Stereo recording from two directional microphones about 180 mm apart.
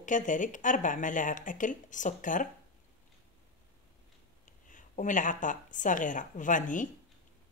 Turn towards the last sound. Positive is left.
turn(degrees=45)  # may be behind; listen again after turning